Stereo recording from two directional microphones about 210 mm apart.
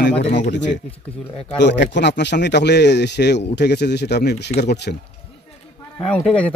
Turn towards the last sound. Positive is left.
turn(degrees=5)  # may be behind; listen again after turning